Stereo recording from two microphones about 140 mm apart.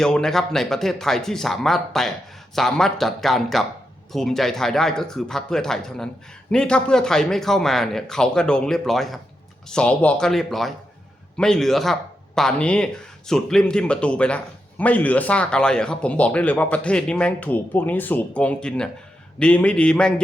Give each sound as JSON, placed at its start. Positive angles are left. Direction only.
{"t": 0.0, "sound": "speech", "side_deg": 5}